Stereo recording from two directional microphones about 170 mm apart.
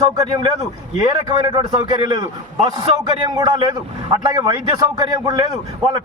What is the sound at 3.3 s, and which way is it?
A man's voice, 20° right (ahead or behind).